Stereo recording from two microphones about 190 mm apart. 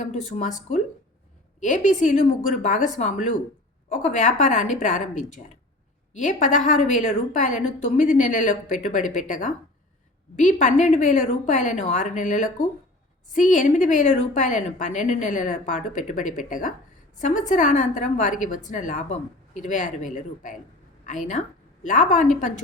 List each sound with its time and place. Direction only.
0.0 s a woman's voice: 40° left (ahead or behind)